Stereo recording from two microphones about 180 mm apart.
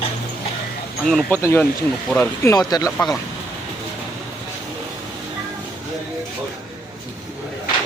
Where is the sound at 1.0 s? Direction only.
5° left (ahead or behind).